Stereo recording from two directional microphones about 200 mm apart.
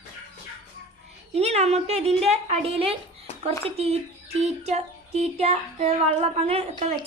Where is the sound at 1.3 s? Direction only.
30° right (ahead or behind).